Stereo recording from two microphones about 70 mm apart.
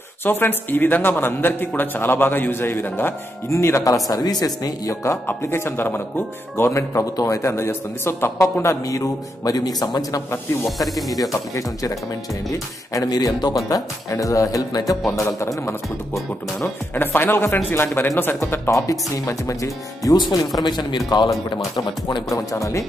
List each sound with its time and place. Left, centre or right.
0.2 s a man's voice: left
3.4 s a man's voice: left
5.2 s a man's voice: left
6.7 s a man's voice: left
8.6 s a man's voice: left
10.8 s speech: centre
11.1 s speech: left
16.5 s a man's voice: left
18.4 s speech: left
20.2 s speech: left
21.7 s speech: left